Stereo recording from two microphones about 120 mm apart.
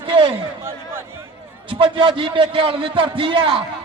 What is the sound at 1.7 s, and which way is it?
A man's voice, 45° right (ahead or behind).